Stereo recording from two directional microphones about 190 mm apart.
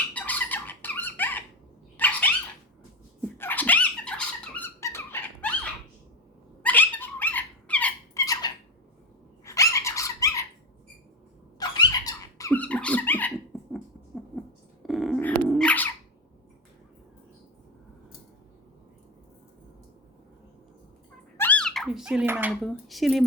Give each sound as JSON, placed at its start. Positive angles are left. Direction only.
{"t": 0.1, "sound": "squawk", "side_deg": 10}
{"t": 2.0, "sound": "dog", "side_deg": 10}
{"t": 3.3, "sound": "squeak", "side_deg": 10}
{"t": 6.6, "sound": "a sound", "side_deg": 10}
{"t": 9.4, "sound": "dog", "side_deg": 15}
{"t": 11.8, "sound": "squeak", "side_deg": 20}
{"t": 14.8, "sound": "dog", "side_deg": 0}
{"t": 21.3, "sound": "squeak", "side_deg": 10}
{"t": 22.6, "sound": "speech", "side_deg": 0}